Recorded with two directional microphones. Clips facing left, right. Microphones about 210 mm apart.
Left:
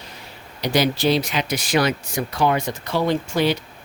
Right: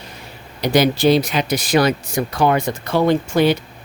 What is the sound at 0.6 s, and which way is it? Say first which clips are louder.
Speech: right 5 dB; 50° right (ahead or behind).